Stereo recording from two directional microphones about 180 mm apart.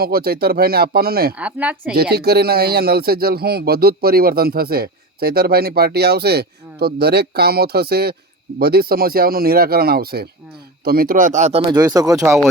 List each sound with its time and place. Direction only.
0.0 s speech: 60° right (ahead or behind)
1.4 s speech: 10° right (ahead or behind)
1.9 s speech: 60° right (ahead or behind); by 11.6 s 40° right (ahead or behind)
11.7 s speech: 20° right (ahead or behind)